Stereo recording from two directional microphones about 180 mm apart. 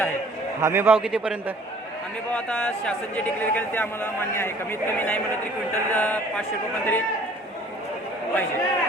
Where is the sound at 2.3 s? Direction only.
5° left (ahead or behind).